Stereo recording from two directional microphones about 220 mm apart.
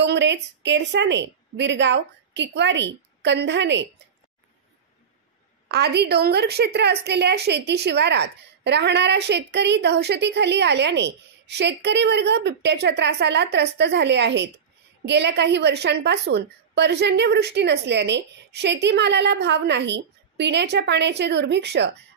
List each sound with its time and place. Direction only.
0.0 s a woman's voice: 50° right (ahead or behind)
5.7 s a woman's voice: 50° right (ahead or behind)